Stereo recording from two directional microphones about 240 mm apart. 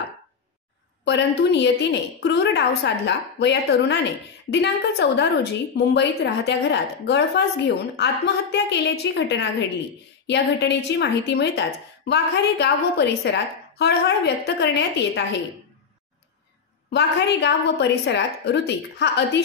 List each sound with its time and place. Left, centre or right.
1.0 s a woman's voice: left
16.9 s a woman's voice: left